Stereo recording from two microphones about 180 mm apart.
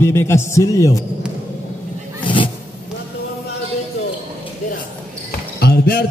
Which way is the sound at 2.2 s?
30° left (ahead or behind).